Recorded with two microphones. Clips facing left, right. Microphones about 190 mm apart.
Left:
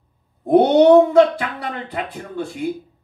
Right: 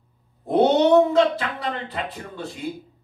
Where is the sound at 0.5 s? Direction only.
55° left (ahead or behind).